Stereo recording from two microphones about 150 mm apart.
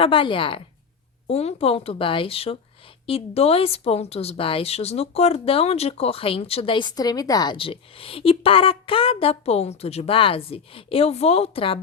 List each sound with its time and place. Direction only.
0.0 s speech: 35° left (ahead or behind)